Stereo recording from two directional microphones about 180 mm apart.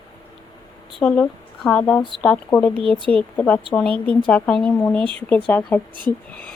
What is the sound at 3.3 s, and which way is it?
Speech, 10° left (ahead or behind).